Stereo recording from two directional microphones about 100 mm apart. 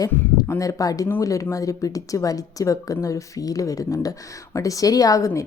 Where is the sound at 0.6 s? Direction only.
35° left (ahead or behind).